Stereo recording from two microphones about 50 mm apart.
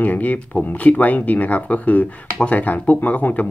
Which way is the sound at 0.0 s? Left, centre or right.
Left.